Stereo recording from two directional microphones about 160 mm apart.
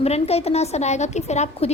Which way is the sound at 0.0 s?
40° left (ahead or behind).